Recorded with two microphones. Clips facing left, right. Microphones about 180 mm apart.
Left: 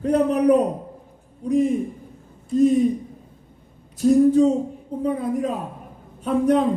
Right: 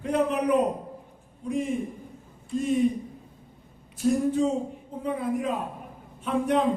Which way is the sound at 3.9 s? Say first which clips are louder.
Left 8 dB; 40° left (ahead or behind).